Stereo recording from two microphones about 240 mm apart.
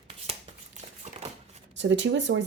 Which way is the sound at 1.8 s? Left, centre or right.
Right.